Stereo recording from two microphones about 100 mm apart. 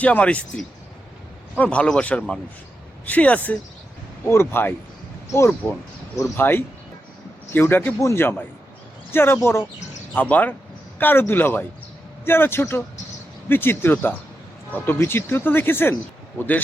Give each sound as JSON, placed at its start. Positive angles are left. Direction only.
{"t": 0.0, "sound": "speech", "side_deg": 15}
{"t": 6.3, "sound": "speech", "side_deg": 20}